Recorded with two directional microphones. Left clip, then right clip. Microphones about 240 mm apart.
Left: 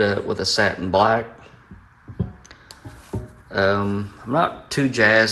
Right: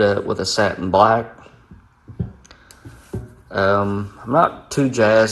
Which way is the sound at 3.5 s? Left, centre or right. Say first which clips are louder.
Right 2 dB; centre.